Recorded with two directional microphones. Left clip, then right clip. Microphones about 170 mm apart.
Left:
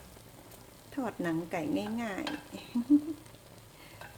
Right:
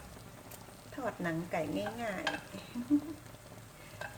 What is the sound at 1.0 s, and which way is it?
A woman's voice, 65° left (ahead or behind).